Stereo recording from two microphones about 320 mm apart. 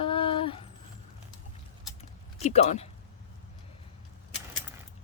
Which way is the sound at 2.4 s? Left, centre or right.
Left.